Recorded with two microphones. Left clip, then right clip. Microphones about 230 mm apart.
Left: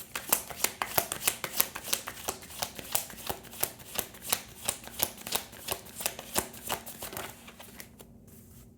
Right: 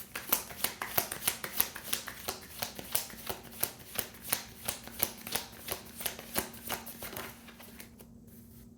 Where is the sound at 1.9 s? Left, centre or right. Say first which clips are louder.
Left 3 dB; left.